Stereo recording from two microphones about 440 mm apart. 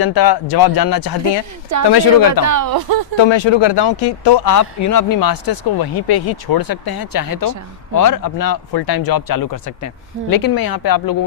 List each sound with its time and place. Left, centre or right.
0.0 s speech: left
2.5 s speech: right
3.2 s speech: left
4.4 s speech: left